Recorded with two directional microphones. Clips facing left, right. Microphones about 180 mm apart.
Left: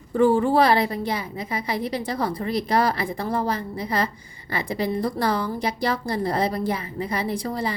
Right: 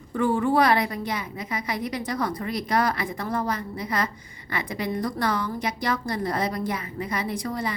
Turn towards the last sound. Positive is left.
turn(degrees=30)  # may be behind; listen again after turning